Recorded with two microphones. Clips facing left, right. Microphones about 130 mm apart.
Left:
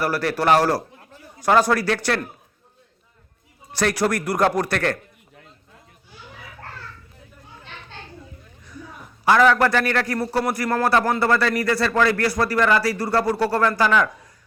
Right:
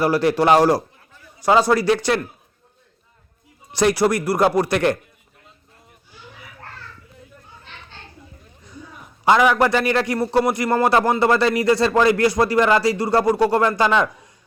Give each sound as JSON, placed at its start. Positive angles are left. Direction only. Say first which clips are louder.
{"t": 0.0, "sound": "speech", "louder": "right 5 dB", "side_deg": -20}
{"t": 3.8, "sound": "speech", "louder": "right 4 dB", "side_deg": -10}
{"t": 9.2, "sound": "speech", "louder": "right 1 dB", "side_deg": -15}